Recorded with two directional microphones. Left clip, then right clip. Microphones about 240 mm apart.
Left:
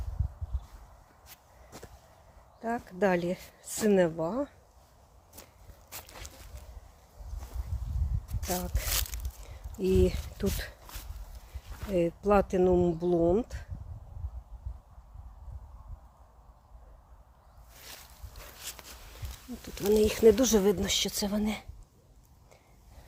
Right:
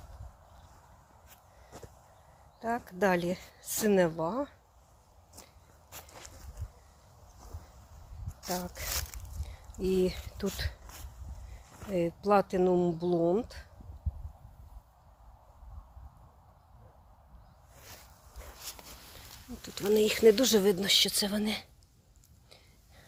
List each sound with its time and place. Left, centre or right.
2.6 s speech: centre
5.9 s walk: centre
8.4 s a sound: centre
9.7 s speech: centre
11.9 s speech: centre
19.9 s speech: centre